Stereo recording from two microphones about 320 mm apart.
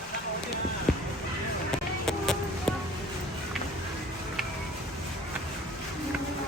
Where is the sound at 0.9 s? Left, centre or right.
Centre.